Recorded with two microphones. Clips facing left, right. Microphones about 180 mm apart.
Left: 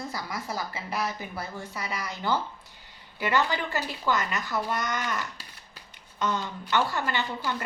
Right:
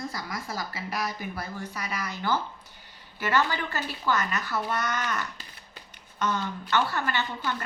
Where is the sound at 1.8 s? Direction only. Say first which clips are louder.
Left 1 dB; 25° left (ahead or behind).